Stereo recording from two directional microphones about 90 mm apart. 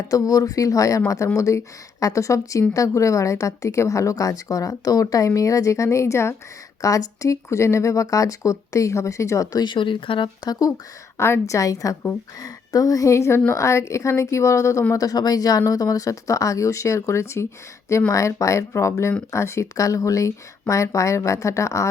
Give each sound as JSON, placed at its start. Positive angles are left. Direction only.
{"t": 0.1, "sound": "a woman's voice", "side_deg": 40}
{"t": 9.6, "sound": "speech", "side_deg": 65}
{"t": 11.2, "sound": "a woman's voice", "side_deg": 35}